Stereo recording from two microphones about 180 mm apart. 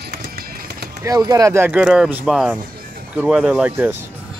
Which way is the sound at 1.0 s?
20° right (ahead or behind).